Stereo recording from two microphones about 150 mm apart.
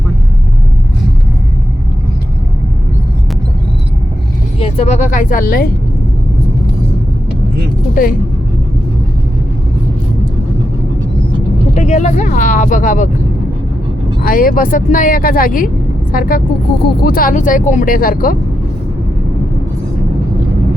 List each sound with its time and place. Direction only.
4.6 s speech: 45° left (ahead or behind); by 5.7 s 75° left (ahead or behind)
8.0 s speech: 65° left (ahead or behind)
11.7 s speech: 50° left (ahead or behind)
14.2 s speech: 75° left (ahead or behind)
17.0 s speech: 75° left (ahead or behind)